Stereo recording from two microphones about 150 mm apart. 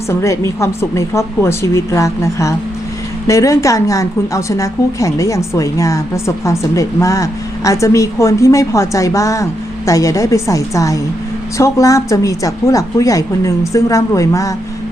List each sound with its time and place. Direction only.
0.1 s a woman's voice: 20° left (ahead or behind)